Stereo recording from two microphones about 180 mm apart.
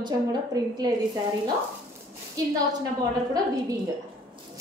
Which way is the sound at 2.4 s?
20° right (ahead or behind).